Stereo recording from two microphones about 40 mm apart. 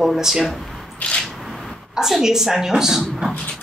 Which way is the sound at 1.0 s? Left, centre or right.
Left.